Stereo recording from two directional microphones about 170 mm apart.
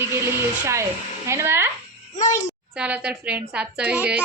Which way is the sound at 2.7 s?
5° right (ahead or behind).